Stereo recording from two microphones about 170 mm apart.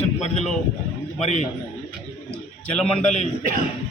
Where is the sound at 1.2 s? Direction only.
40° left (ahead or behind).